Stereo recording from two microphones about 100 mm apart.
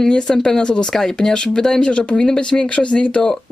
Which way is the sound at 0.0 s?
5° left (ahead or behind).